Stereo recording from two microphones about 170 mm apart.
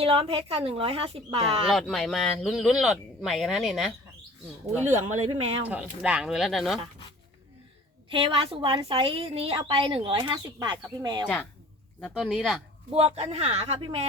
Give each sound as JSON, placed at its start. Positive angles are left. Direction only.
{"t": 0.0, "sound": "a woman's voice", "side_deg": -35}
{"t": 1.7, "sound": "speech", "side_deg": 0}
{"t": 5.3, "sound": "a woman's voice", "side_deg": -35}
{"t": 5.6, "sound": "speech", "side_deg": -10}
{"t": 8.1, "sound": "a woman's voice", "side_deg": -30}
{"t": 11.9, "sound": "speech", "side_deg": 0}
{"t": 12.9, "sound": "a woman's voice", "side_deg": -35}